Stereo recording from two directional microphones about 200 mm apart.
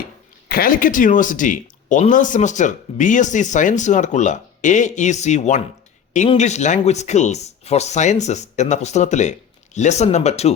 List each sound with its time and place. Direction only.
0.4 s speech: 45° left (ahead or behind)